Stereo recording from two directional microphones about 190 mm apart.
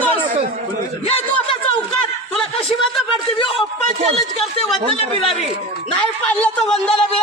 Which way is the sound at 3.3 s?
30° left (ahead or behind).